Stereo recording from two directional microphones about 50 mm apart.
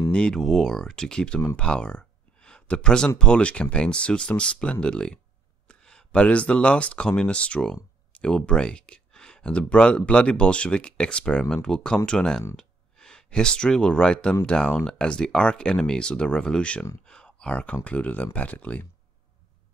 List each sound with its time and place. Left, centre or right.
0.1 s speech: left
0.4 s speech: centre
1.6 s a sound: centre
3.2 s speech: centre
17.0 s a sound: centre
17.8 s speech: left